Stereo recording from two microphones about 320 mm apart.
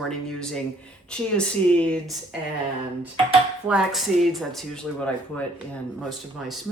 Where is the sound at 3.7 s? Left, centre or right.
Centre.